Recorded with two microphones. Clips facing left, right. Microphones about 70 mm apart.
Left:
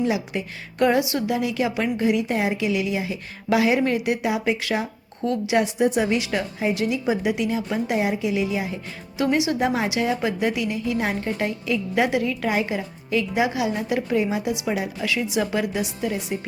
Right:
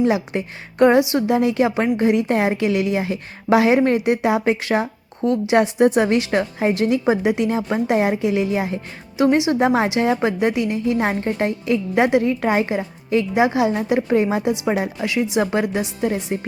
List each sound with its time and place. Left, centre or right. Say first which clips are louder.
0.0 s a woman's voice: right 5 dB; right
5.5 s a woman's voice: right 5 dB; right
7.2 s a woman's voice: right 4 dB; right
9.1 s a woman's voice: right 5 dB; right
14.2 s a woman's voice: right 4 dB; right
15.0 s a woman's voice: right 4 dB; right